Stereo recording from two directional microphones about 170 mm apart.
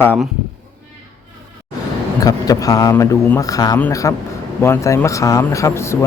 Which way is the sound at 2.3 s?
20° left (ahead or behind).